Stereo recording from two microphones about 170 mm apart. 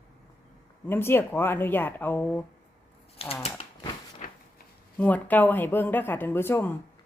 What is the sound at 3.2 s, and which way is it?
Speech, 35° left (ahead or behind).